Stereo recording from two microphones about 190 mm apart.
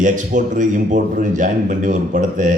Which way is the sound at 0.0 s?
40° right (ahead or behind).